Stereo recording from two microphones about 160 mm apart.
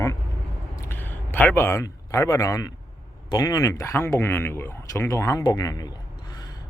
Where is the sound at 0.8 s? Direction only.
15° left (ahead or behind).